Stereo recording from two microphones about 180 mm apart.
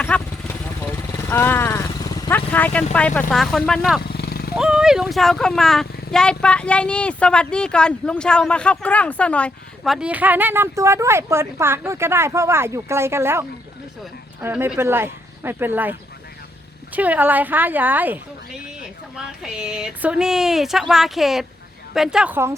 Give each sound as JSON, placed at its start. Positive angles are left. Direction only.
{"t": 0.0, "sound": "vehicle", "side_deg": 10}
{"t": 1.3, "sound": "speech", "side_deg": 10}
{"t": 4.1, "sound": "a sound", "side_deg": 60}
{"t": 4.5, "sound": "speech", "side_deg": -5}
{"t": 14.4, "sound": "a woman's voice", "side_deg": -10}